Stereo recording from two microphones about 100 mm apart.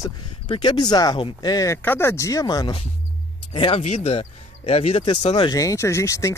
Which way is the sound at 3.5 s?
55° left (ahead or behind).